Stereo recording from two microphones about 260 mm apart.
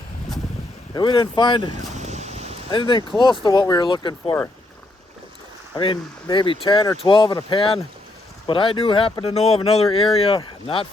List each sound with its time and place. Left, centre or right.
0.9 s speech: centre
2.0 s a sound: right
2.6 s speech: centre
5.7 s speech: centre